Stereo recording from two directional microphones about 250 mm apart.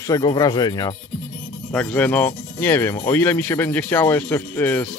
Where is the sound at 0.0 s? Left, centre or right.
Centre.